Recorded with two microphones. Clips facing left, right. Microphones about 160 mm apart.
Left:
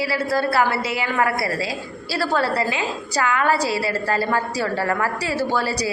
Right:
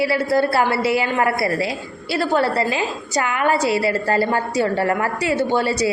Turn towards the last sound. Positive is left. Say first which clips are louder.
# right 4 dB
turn(degrees=-25)  # may be behind; listen again after turning